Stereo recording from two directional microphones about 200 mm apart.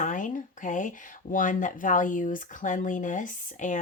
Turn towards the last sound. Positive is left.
turn(degrees=40)  # may be behind; listen again after turning